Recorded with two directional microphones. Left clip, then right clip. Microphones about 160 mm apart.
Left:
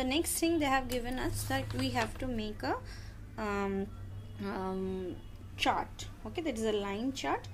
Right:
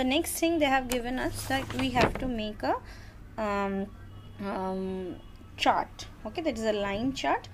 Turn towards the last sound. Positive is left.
turn(degrees=-20)  # may be behind; listen again after turning